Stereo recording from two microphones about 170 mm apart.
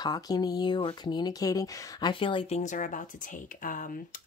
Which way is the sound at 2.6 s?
50° left (ahead or behind).